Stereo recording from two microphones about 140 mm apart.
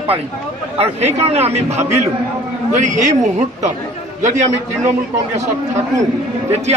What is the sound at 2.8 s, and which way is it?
Speech, 60° right (ahead or behind).